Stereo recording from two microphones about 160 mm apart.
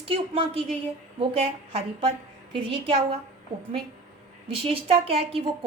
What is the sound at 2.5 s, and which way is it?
Speech, 35° right (ahead or behind).